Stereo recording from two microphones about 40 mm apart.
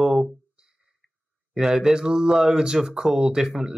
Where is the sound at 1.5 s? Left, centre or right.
Centre.